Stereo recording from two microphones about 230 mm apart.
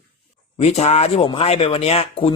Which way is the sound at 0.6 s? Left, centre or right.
Left.